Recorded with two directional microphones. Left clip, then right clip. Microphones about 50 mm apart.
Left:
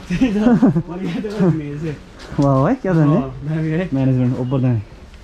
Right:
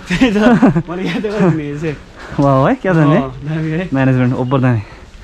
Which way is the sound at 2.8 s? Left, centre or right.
Centre.